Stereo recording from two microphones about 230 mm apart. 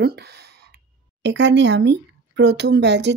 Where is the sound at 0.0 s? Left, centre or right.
Right.